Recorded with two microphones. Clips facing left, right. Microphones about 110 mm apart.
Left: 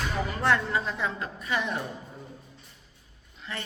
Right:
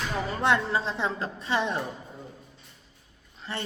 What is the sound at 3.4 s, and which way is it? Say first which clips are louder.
Speech: right 3 dB; 30° right (ahead or behind).